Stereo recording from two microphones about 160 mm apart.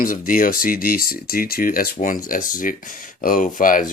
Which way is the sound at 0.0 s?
60° left (ahead or behind).